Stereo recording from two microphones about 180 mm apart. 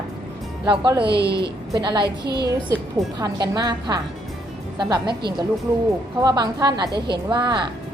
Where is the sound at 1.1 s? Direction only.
65° right (ahead or behind).